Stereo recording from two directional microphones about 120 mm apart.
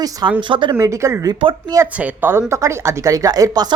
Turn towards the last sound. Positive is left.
turn(degrees=-35)  # may be behind; listen again after turning